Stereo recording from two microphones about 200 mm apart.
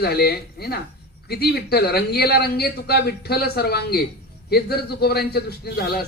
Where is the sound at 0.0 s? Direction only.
50° left (ahead or behind).